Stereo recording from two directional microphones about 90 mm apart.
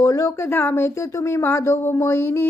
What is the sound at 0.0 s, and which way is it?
Speech, 40° left (ahead or behind).